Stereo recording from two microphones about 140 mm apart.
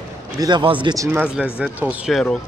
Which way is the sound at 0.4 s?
35° right (ahead or behind).